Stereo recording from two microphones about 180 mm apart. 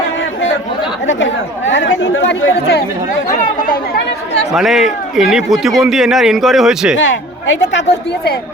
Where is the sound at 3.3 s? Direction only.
45° left (ahead or behind).